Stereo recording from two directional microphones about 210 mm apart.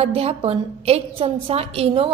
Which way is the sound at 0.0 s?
30° right (ahead or behind).